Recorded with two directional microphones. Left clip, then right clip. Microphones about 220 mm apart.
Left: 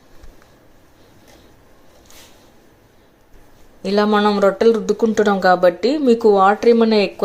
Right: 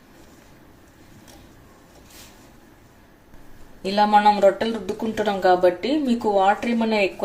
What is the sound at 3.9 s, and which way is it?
Speech, 30° left (ahead or behind).